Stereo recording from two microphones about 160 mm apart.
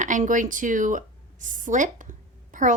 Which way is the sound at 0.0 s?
55° right (ahead or behind).